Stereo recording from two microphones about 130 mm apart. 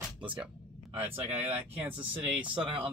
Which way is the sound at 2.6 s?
40° right (ahead or behind).